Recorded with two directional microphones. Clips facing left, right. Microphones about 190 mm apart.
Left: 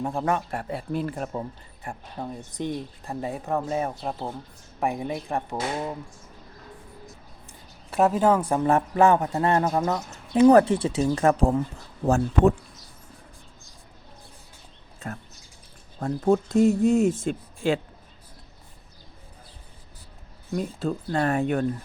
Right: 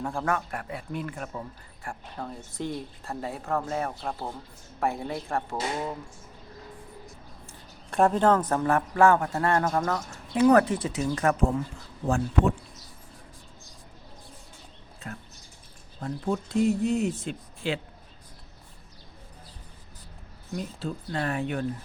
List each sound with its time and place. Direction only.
0.0 s speech: 20° left (ahead or behind)
1.8 s speech: 20° left (ahead or behind)
7.9 s speech: 5° left (ahead or behind)
8.6 s speech: 20° left (ahead or behind)
12.0 s speech: 40° left (ahead or behind)
15.0 s speech: 50° left (ahead or behind)
20.6 s speech: 50° left (ahead or behind)